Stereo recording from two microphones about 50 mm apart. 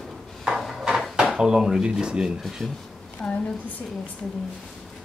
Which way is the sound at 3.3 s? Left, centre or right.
Left.